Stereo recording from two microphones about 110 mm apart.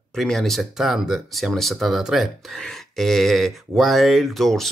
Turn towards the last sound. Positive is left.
turn(degrees=0)  # may be behind; listen again after turning